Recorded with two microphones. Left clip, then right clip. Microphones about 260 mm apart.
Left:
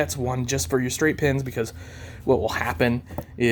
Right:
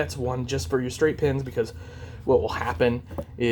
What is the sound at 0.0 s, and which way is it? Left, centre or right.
Speech, left.